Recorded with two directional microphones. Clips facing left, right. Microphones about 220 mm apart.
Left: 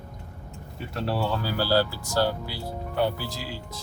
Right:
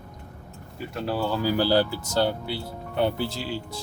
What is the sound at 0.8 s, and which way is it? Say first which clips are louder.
Speech: right 1 dB; centre (ahead or behind).